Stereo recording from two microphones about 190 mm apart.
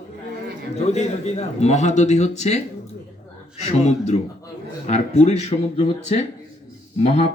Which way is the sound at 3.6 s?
35° left (ahead or behind).